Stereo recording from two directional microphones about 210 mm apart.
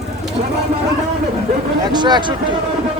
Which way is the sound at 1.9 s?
20° right (ahead or behind).